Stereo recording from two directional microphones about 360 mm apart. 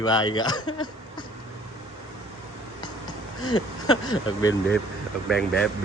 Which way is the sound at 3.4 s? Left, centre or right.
Left.